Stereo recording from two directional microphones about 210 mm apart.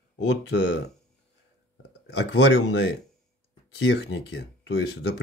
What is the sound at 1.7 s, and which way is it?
Speech, 55° left (ahead or behind).